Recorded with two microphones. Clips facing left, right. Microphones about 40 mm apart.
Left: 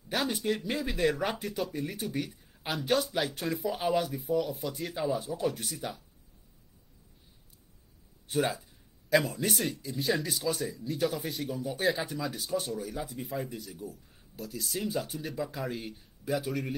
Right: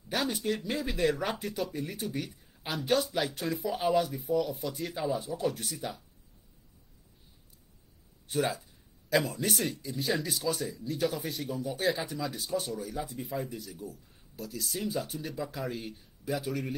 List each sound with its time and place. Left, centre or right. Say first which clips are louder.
0.1 s speech: left 1 dB; centre
8.3 s speech: left 1 dB; centre